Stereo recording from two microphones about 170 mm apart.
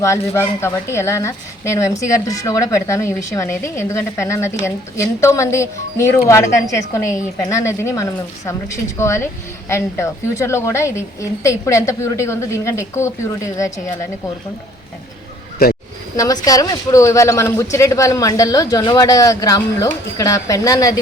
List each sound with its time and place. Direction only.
0.0 s a woman's voice: 15° left (ahead or behind)
15.6 s speech: 65° left (ahead or behind)
16.1 s speech: 20° left (ahead or behind)